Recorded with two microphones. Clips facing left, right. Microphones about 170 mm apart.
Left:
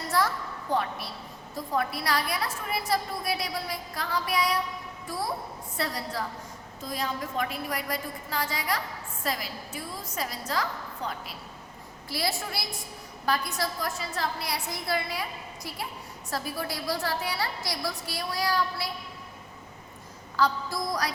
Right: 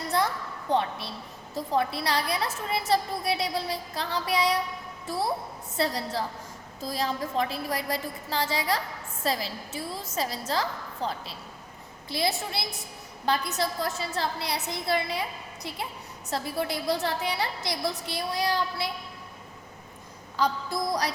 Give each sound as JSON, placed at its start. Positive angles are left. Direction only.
{"t": 0.1, "sound": "a sound", "side_deg": -20}
{"t": 0.7, "sound": "a woman's voice", "side_deg": -25}
{"t": 20.3, "sound": "a woman's voice", "side_deg": -20}